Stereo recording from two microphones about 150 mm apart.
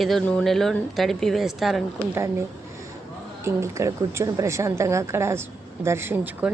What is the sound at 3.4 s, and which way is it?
A woman's voice, 20° right (ahead or behind).